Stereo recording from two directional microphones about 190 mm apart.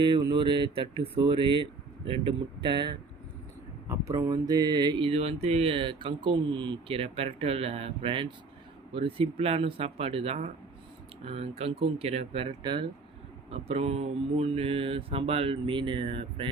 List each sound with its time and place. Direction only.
0.0 s mantra: 25° right (ahead or behind)
11.3 s speech: 30° right (ahead or behind)
13.5 s mantra: 30° right (ahead or behind)